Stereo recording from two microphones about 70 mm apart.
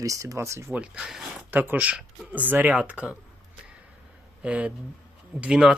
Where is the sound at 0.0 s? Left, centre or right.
Right.